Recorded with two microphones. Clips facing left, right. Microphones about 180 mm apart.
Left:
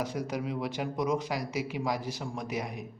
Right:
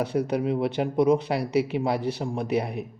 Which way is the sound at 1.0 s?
30° right (ahead or behind).